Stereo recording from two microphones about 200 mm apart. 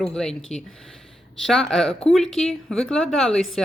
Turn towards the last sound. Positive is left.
turn(degrees=0)  # may be behind; listen again after turning